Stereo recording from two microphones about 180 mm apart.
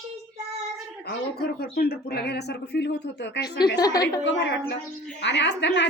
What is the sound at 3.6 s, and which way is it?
Speech, 25° left (ahead or behind).